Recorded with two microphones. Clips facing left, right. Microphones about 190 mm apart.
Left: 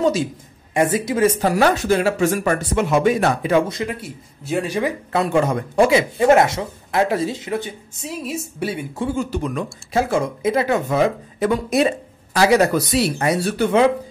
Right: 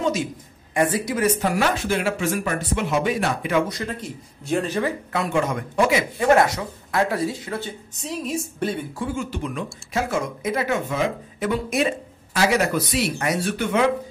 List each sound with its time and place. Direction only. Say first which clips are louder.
0.7 s speech: left 4 dB; 20° left (ahead or behind)
1.4 s speech: left 5 dB; 35° left (ahead or behind)
3.5 s speech: left 2 dB; 25° left (ahead or behind)
3.8 s speech: left 3 dB; 5° left (ahead or behind)
5.1 s speech: left 6 dB; 35° left (ahead or behind)
8.0 s speech: even; 5° left (ahead or behind)
8.9 s speech: left 5 dB; 30° left (ahead or behind)
9.9 s speech: left 5 dB; 30° left (ahead or behind)